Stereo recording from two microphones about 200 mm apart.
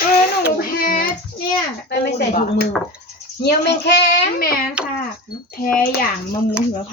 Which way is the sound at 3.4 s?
55° left (ahead or behind).